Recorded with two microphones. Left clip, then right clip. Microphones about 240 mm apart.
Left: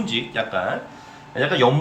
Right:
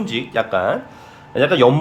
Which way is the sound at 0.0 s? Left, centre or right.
Centre.